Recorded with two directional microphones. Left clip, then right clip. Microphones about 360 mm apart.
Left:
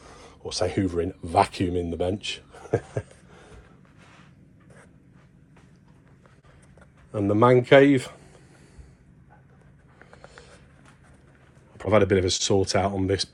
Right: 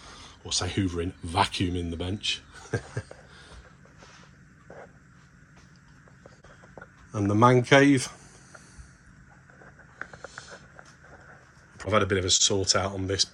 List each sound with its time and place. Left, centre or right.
0.2 s speech: centre
7.1 s speech: centre
11.9 s speech: centre